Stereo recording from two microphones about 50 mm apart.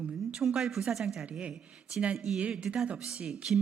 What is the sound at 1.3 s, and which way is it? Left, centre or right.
A woman's voice, right.